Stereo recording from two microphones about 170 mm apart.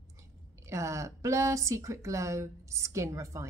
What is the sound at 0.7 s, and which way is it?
A woman's voice, 15° right (ahead or behind).